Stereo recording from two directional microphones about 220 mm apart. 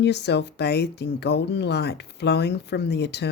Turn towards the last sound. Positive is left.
turn(degrees=50)  # may be behind; listen again after turning